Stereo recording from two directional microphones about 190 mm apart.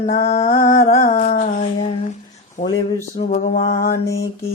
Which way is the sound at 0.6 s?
45° left (ahead or behind).